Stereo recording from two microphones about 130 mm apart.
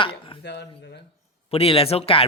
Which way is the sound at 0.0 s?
40° left (ahead or behind).